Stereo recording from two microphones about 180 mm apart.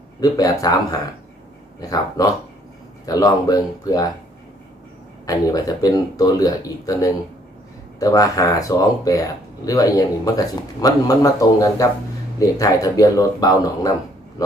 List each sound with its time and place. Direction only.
0.2 s speech: 20° left (ahead or behind)
5.2 s speech: 20° left (ahead or behind)